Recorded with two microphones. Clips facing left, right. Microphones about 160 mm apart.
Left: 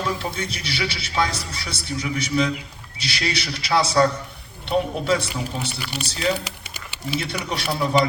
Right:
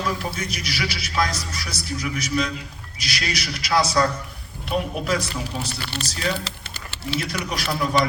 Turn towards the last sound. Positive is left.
turn(degrees=30)  # may be behind; listen again after turning